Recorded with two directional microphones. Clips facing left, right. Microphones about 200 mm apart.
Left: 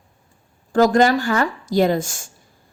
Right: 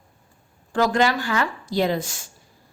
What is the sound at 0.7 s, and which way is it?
A woman's voice, 45° left (ahead or behind).